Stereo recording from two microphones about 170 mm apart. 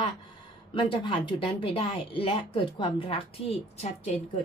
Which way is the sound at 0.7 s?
30° left (ahead or behind).